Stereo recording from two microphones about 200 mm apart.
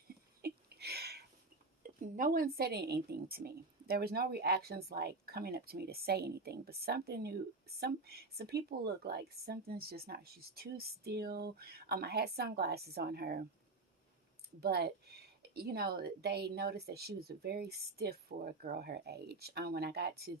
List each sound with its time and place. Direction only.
0.4 s a sound: 55° right (ahead or behind)
1.8 s a woman's voice: 40° right (ahead or behind)
14.6 s a woman's voice: 55° right (ahead or behind)